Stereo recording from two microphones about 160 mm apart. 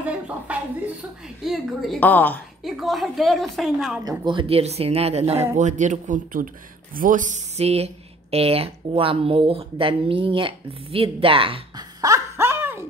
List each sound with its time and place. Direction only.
0.0 s a sound: 10° right (ahead or behind)
1.4 s a woman's voice: centre (ahead or behind)
2.0 s a woman's voice: 10° left (ahead or behind)
2.6 s a woman's voice: centre (ahead or behind)
4.0 s speech: 25° right (ahead or behind)
12.0 s a sound: 15° right (ahead or behind)